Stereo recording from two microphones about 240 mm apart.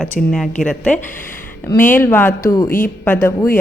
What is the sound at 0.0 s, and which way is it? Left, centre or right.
A woman's voice, centre.